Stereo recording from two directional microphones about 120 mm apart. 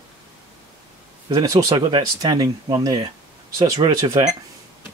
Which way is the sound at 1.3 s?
30° right (ahead or behind).